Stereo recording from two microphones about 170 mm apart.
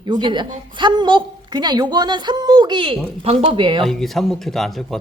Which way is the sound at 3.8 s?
Centre (ahead or behind).